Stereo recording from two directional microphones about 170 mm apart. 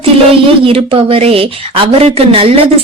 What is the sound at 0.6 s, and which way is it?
Speech, 35° right (ahead or behind).